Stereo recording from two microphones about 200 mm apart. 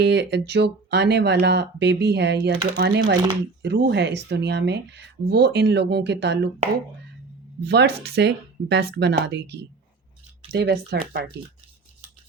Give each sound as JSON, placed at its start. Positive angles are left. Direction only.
{"t": 0.0, "sound": "speech", "side_deg": -60}
{"t": 7.6, "sound": "speech", "side_deg": -55}